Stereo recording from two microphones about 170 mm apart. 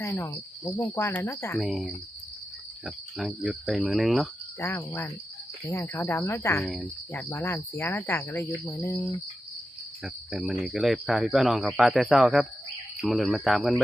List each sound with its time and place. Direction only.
0.0 s cricket: 15° left (ahead or behind)
1.5 s speech: centre (ahead or behind)
4.6 s cricket: 15° left (ahead or behind)
10.0 s speech: centre (ahead or behind)